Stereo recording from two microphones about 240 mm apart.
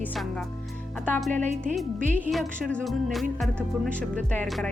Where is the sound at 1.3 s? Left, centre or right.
Right.